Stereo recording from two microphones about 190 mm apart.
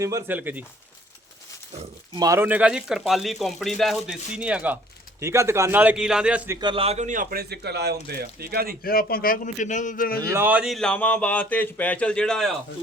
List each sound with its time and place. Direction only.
0.0 s a man's voice: 15° right (ahead or behind)
2.1 s a man's voice: 15° right (ahead or behind)
6.6 s a man's voice: 25° right (ahead or behind); by 8.7 s 55° right (ahead or behind)
8.8 s a man's voice: 50° left (ahead or behind)
10.3 s speech: 10° right (ahead or behind)